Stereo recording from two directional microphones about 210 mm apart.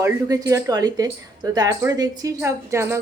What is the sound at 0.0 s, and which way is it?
Speech, 15° right (ahead or behind).